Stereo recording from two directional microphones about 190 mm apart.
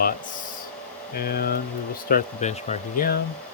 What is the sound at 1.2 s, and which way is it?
Speech, 55° left (ahead or behind).